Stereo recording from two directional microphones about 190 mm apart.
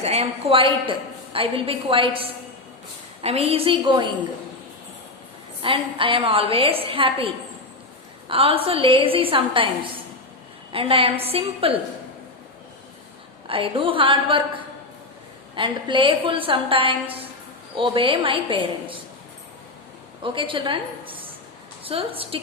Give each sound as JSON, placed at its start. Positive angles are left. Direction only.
{"t": 0.0, "sound": "a woman's voice", "side_deg": -35}
{"t": 5.6, "sound": "a woman's voice", "side_deg": -30}
{"t": 10.7, "sound": "a woman's voice", "side_deg": -30}
{"t": 13.5, "sound": "a woman's voice", "side_deg": -30}
{"t": 20.2, "sound": "a woman's voice", "side_deg": -25}